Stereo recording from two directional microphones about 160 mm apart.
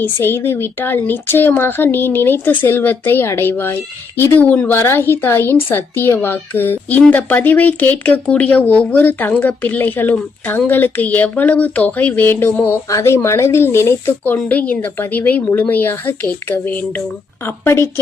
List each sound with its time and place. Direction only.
0.0 s a woman's voice: 15° left (ahead or behind)